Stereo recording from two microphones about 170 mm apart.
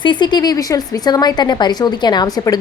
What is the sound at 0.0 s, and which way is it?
A woman's voice, 25° left (ahead or behind).